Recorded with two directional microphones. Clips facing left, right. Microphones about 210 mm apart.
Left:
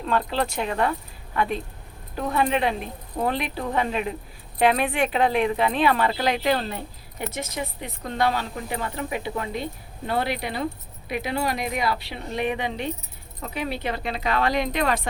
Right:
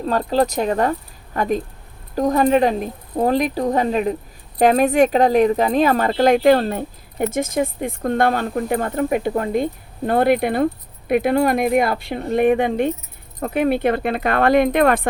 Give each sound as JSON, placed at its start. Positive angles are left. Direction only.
{"t": 0.0, "sound": "speech", "side_deg": -40}